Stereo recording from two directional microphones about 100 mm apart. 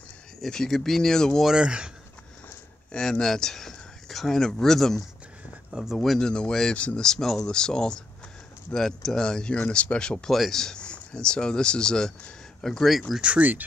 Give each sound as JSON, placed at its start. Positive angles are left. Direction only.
{"t": 0.4, "sound": "speech", "side_deg": 5}
{"t": 1.5, "sound": "speech", "side_deg": -10}
{"t": 2.9, "sound": "speech", "side_deg": 5}
{"t": 5.9, "sound": "speech", "side_deg": 5}
{"t": 13.3, "sound": "speech", "side_deg": -15}